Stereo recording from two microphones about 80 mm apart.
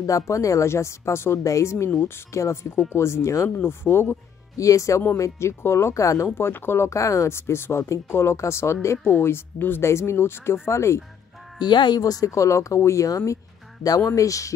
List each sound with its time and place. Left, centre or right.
0.3 s speech: left
4.6 s speech: left
6.2 s speech: left
11.6 s speech: left
12.0 s speech: left